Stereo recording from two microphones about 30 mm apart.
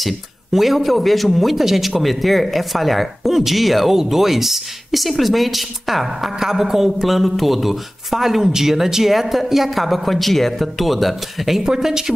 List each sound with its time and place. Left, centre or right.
0.5 s speech: centre
3.9 s speech: centre
6.4 s speech: centre
11.6 s speech: centre